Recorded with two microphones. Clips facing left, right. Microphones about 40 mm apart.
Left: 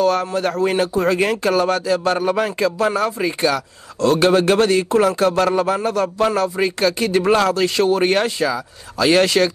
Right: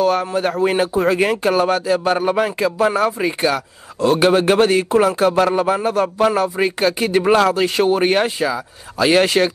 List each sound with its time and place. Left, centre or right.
0.0 s speech: centre